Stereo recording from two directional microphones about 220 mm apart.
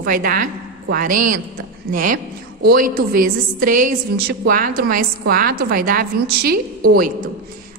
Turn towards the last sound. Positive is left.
turn(degrees=-40)  # may be behind; listen again after turning